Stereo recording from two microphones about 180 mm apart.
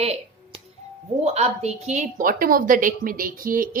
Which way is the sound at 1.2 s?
35° right (ahead or behind).